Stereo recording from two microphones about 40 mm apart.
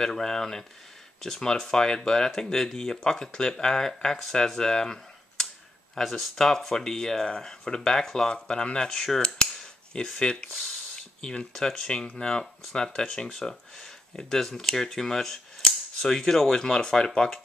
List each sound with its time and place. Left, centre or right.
0.0 s speech: centre
8.8 s speech: centre
9.6 s a sound: centre
10.1 s speech: left
11.0 s a sound: centre
11.5 s speech: centre